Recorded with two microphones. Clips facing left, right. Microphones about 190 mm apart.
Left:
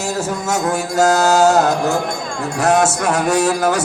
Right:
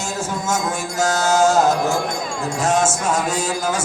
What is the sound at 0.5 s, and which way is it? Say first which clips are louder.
Music: left 7 dB; 65° left (ahead or behind).